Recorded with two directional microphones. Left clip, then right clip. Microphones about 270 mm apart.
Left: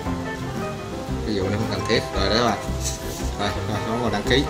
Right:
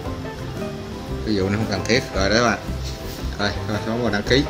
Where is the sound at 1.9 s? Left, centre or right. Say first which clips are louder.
Right 2 dB; centre.